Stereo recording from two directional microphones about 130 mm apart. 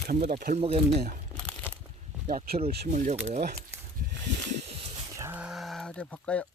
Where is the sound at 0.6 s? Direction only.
50° right (ahead or behind).